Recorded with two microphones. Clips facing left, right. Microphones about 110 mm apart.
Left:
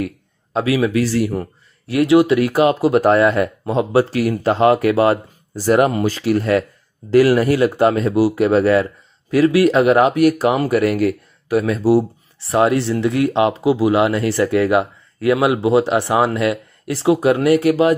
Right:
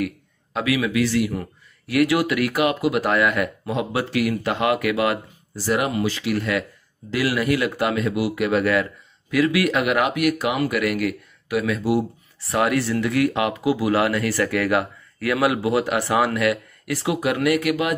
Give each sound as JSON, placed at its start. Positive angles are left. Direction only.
{"t": 0.0, "sound": "speech", "side_deg": 30}